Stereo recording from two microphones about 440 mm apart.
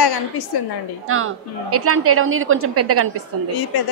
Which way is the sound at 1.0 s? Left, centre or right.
Right.